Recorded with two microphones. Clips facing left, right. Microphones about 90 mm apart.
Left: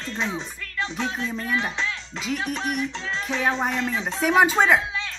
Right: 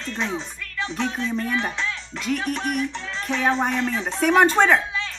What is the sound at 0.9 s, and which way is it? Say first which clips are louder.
A woman's voice: right 5 dB; 5° left (ahead or behind).